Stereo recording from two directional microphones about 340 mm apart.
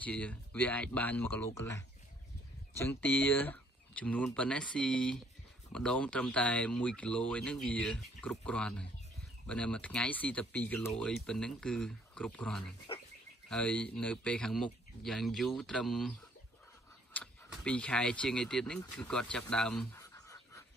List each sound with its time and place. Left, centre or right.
0.0 s speech: centre
12.9 s frog: centre
13.5 s speech: centre